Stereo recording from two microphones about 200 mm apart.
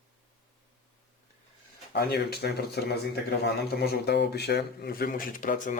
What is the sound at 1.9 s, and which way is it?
Speech, 50° left (ahead or behind).